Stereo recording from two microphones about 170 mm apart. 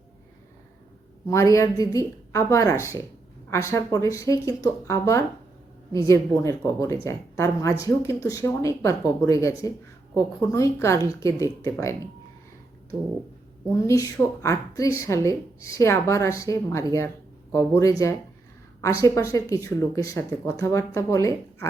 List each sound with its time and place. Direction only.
1.3 s a woman's voice: 15° left (ahead or behind)
13.7 s a woman's voice: 20° left (ahead or behind)